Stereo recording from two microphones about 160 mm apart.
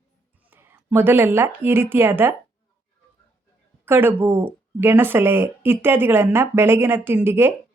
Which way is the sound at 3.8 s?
15° right (ahead or behind).